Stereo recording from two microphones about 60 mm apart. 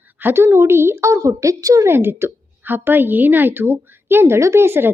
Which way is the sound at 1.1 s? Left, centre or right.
Right.